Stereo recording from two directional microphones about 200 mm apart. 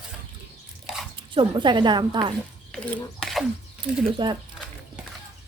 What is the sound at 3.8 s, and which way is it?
Speech, 25° right (ahead or behind).